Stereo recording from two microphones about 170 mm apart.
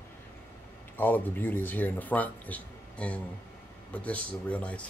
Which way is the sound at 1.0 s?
10° left (ahead or behind).